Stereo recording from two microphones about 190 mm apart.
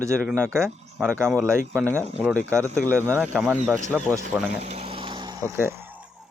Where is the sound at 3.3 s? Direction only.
5° right (ahead or behind).